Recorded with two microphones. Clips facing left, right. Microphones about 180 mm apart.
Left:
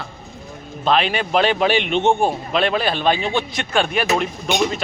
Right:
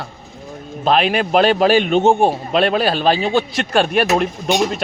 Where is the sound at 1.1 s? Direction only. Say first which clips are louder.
Right 4 dB; 45° right (ahead or behind).